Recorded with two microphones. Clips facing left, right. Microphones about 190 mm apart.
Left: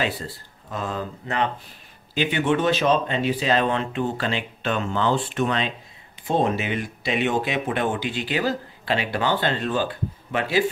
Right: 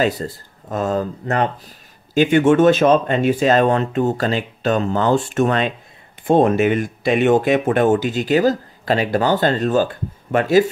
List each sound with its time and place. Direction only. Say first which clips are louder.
0.0 s speech: right 7 dB; 45° right (ahead or behind)